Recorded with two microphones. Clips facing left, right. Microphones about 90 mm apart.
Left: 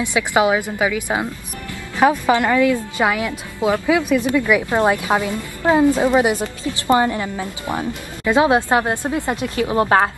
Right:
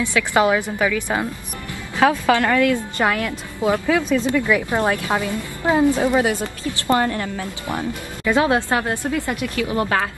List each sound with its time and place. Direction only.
0.0 s a woman's voice: 15° left (ahead or behind)